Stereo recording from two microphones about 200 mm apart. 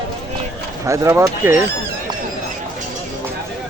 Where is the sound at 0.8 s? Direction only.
15° right (ahead or behind).